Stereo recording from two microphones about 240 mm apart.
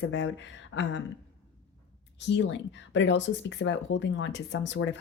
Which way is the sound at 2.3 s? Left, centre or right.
Left.